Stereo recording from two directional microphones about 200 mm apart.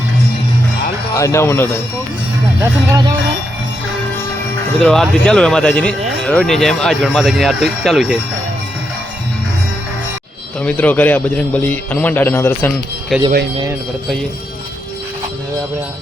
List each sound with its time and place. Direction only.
1.1 s a man's voice: 15° left (ahead or behind)
2.6 s speech: 15° right (ahead or behind)
4.8 s speech: 5° left (ahead or behind)
10.6 s a man's voice: 10° left (ahead or behind)